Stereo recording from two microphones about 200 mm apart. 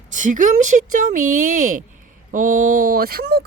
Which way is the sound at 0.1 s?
40° right (ahead or behind).